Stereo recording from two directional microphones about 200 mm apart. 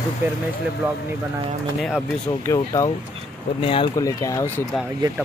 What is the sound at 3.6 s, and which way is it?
Speech, 25° left (ahead or behind).